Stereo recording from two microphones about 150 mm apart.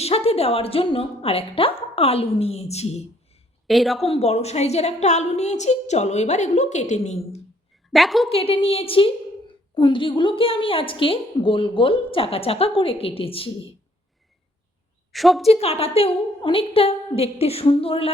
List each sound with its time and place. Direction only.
0.0 s a woman's voice: 40° left (ahead or behind)
3.7 s a woman's voice: centre (ahead or behind)
4.0 s a woman's voice: 40° left (ahead or behind)
7.9 s a woman's voice: centre (ahead or behind)
8.3 s a woman's voice: 40° left (ahead or behind)
15.1 s a woman's voice: centre (ahead or behind)
15.4 s a woman's voice: 45° left (ahead or behind)